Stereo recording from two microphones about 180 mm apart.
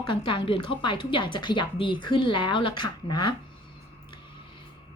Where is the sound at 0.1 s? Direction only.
25° left (ahead or behind).